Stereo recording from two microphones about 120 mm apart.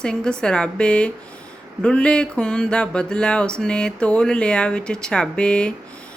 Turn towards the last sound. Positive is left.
turn(degrees=10)  # may be behind; listen again after turning